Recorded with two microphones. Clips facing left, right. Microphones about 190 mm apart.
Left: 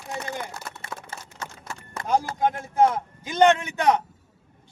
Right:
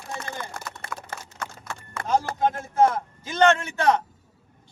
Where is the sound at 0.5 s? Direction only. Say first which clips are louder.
Right 1 dB; 55° right (ahead or behind).